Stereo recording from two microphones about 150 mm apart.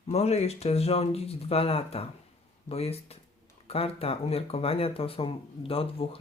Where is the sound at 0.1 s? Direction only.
45° left (ahead or behind).